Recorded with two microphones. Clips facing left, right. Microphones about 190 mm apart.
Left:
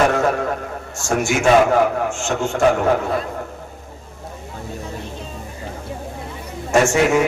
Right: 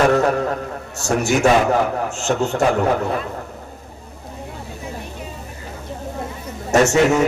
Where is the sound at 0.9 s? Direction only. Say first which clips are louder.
Right 1 dB; 40° right (ahead or behind).